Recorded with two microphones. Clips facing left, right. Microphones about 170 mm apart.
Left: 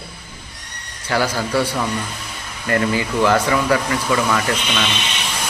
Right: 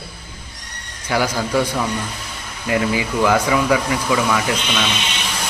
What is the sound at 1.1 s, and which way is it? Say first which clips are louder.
A man's voice: even; 10° right (ahead or behind).